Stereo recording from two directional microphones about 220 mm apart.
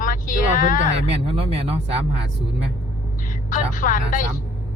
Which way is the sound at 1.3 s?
25° right (ahead or behind).